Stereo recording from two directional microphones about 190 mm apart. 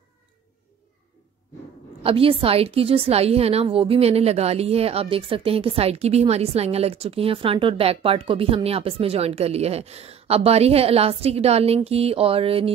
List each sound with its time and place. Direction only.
2.0 s a woman's voice: 30° right (ahead or behind)